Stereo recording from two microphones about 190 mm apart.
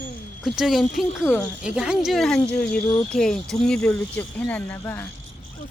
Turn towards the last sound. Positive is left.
turn(degrees=10)  # may be behind; listen again after turning